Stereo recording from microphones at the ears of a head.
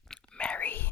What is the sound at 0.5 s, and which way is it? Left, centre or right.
Whispering, left.